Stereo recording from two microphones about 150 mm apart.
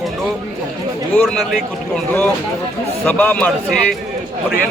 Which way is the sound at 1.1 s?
5° left (ahead or behind).